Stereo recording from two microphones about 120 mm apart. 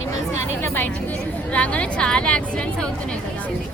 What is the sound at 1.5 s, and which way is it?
A woman's voice, 10° left (ahead or behind).